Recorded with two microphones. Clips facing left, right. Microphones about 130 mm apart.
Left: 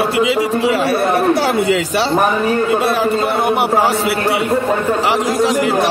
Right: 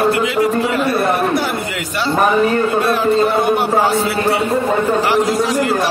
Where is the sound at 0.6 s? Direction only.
85° left.